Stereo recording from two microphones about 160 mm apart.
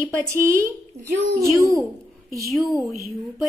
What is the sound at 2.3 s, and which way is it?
Speech, centre (ahead or behind).